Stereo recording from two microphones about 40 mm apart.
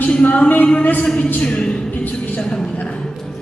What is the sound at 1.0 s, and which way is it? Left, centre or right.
A woman's voice, left.